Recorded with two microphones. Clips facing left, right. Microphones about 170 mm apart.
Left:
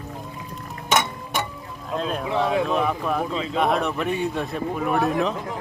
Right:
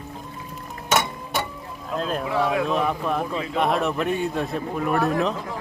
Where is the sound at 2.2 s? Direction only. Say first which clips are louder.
Left 1 dB; 25° left (ahead or behind).